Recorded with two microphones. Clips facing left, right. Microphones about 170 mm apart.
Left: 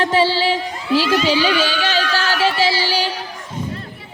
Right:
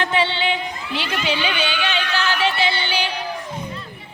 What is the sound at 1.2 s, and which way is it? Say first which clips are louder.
Music: left 6 dB; 40° left (ahead or behind).